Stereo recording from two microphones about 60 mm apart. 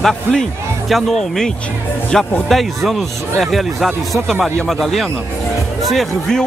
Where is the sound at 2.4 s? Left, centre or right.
Centre.